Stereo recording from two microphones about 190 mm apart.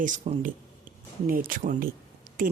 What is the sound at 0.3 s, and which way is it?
Speech, 30° right (ahead or behind).